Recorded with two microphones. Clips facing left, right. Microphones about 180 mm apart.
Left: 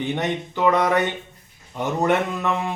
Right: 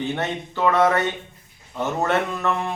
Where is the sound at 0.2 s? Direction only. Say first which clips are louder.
Left 1 dB; 15° left (ahead or behind).